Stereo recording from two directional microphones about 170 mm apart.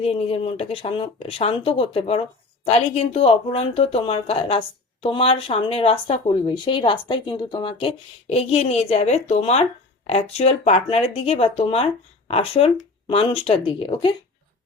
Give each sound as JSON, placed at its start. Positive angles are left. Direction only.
{"t": 0.0, "sound": "speech", "side_deg": 35}